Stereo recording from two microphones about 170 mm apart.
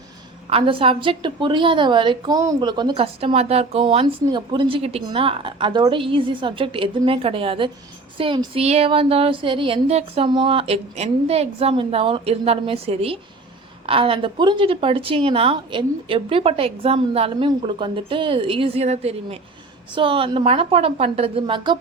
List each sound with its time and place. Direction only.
0.5 s a woman's voice: 30° right (ahead or behind)